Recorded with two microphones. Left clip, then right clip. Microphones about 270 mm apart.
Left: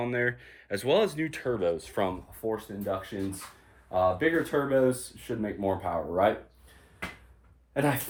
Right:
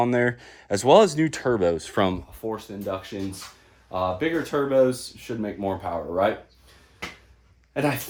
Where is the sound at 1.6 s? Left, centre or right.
Right.